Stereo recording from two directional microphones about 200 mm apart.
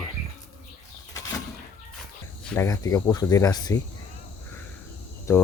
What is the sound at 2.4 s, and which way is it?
Speech, 10° left (ahead or behind).